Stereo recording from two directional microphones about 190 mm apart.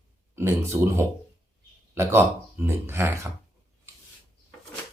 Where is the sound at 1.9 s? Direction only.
15° right (ahead or behind).